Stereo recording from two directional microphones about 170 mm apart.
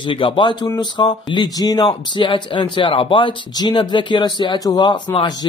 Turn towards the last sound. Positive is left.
turn(degrees=25)  # may be behind; listen again after turning